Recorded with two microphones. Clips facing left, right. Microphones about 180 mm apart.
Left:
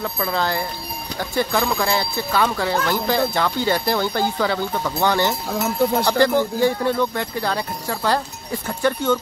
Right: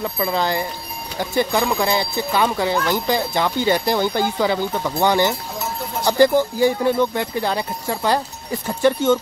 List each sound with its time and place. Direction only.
0.0 s speech: 10° right (ahead or behind)